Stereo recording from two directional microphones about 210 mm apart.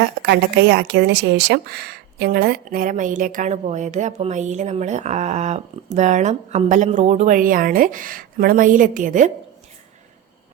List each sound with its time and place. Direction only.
0.0 s a woman's voice: 55° right (ahead or behind); by 9.3 s 40° right (ahead or behind)